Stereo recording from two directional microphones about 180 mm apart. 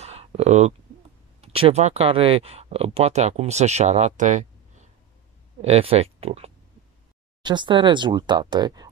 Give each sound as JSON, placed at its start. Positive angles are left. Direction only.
{"t": 0.0, "sound": "a sound", "side_deg": -35}
{"t": 1.4, "sound": "speech", "side_deg": -35}
{"t": 5.6, "sound": "speech", "side_deg": -35}